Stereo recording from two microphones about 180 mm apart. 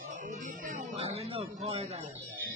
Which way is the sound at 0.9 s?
35° right (ahead or behind).